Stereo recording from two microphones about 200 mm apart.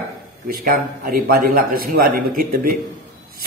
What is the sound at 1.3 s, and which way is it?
A man's voice, 50° right (ahead or behind).